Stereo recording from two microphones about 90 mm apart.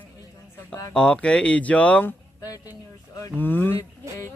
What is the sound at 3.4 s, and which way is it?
Speech, 20° left (ahead or behind).